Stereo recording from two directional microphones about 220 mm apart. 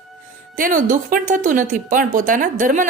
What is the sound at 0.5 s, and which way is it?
Speech, 35° right (ahead or behind).